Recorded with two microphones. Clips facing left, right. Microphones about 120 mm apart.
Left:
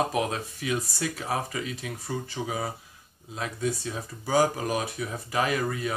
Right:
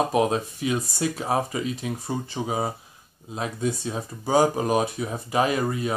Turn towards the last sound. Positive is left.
turn(degrees=-25)  # may be behind; listen again after turning